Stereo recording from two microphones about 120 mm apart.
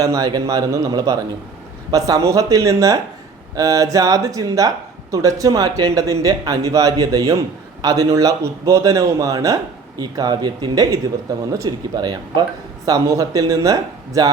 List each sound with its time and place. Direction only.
0.0 s speech: 30° right (ahead or behind)